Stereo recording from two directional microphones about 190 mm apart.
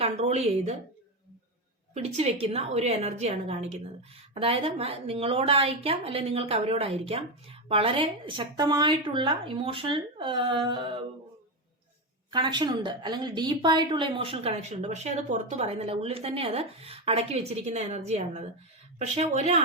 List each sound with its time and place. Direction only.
0.0 s a woman's voice: 35° right (ahead or behind)
1.9 s a woman's voice: 35° right (ahead or behind)
12.3 s a woman's voice: 25° right (ahead or behind)